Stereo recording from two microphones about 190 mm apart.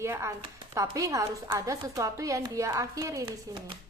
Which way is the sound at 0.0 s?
15° right (ahead or behind).